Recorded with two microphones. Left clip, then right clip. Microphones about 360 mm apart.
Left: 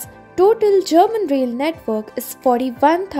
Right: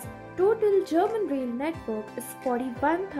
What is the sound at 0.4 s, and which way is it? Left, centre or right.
Speech, centre.